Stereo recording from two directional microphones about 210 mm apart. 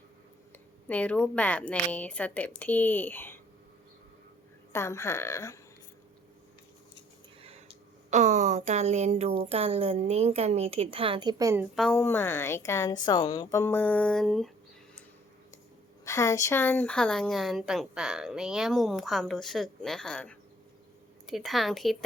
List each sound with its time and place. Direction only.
0.9 s a woman's voice: 5° left (ahead or behind)
4.7 s a woman's voice: 15° left (ahead or behind)
8.1 s a woman's voice: 35° right (ahead or behind); by 14.5 s centre (ahead or behind)
16.0 s a woman's voice: 15° left (ahead or behind)